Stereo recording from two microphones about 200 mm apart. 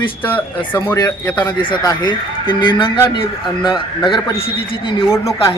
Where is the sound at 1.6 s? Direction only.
25° left (ahead or behind).